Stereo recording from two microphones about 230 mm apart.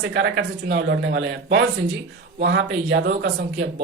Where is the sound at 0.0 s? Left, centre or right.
Right.